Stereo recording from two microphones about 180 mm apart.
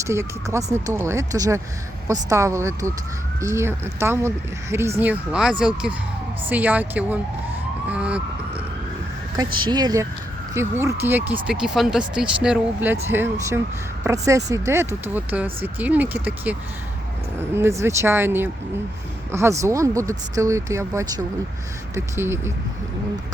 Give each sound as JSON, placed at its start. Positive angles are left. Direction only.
{"t": 0.0, "sound": "speech", "side_deg": -15}
{"t": 7.9, "sound": "vehicle", "side_deg": -5}
{"t": 9.3, "sound": "speech", "side_deg": -25}